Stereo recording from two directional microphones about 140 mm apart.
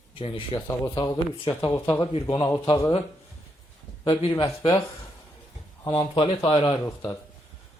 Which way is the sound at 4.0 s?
40° left (ahead or behind).